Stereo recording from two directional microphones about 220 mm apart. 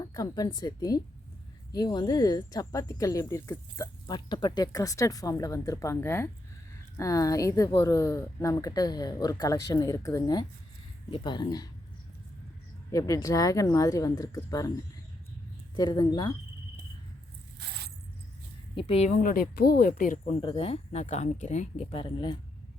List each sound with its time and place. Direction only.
0.0 s speech: 15° left (ahead or behind)
12.9 s speech: 15° left (ahead or behind)
15.7 s speech: 15° left (ahead or behind)
17.6 s a sound: 50° right (ahead or behind)
18.8 s speech: 25° left (ahead or behind)
20.4 s speech: 25° left (ahead or behind)
21.9 s speech: 20° left (ahead or behind)